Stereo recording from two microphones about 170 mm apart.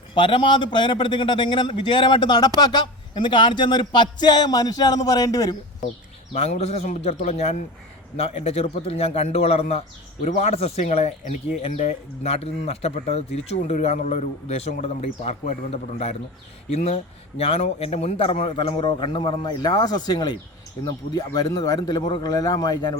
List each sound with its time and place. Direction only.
0.1 s a man's voice: 30° left (ahead or behind)
6.3 s a man's voice: 40° left (ahead or behind); by 23.0 s 25° left (ahead or behind)